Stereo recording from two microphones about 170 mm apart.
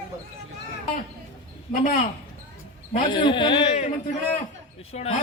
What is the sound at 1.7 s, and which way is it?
Speech, 50° left (ahead or behind).